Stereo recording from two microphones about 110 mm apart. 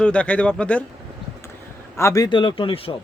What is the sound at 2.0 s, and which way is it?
Speech, 25° left (ahead or behind).